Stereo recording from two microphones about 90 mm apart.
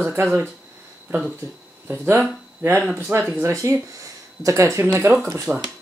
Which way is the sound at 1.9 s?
25° right (ahead or behind).